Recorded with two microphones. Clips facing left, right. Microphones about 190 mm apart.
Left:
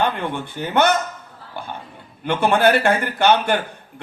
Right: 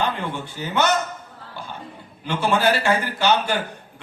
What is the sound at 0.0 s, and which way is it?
Speech, 55° left (ahead or behind).